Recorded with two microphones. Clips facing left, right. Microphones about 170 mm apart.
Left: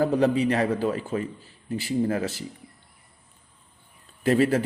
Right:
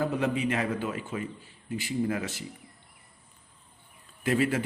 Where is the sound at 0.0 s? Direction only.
35° left (ahead or behind).